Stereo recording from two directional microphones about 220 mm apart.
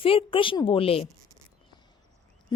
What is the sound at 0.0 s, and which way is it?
A woman's voice, 25° left (ahead or behind).